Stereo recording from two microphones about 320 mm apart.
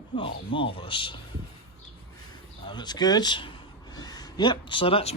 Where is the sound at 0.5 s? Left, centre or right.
Centre.